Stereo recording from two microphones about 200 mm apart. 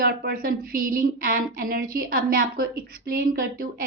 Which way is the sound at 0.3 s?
45° right (ahead or behind).